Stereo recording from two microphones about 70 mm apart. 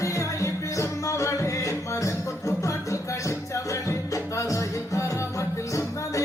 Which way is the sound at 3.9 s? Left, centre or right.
Left.